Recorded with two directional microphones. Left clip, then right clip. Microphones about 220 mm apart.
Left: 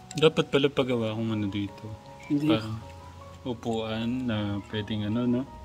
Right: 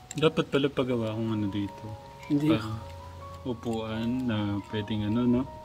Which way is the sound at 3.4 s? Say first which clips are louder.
Left 2 dB; 35° left (ahead or behind).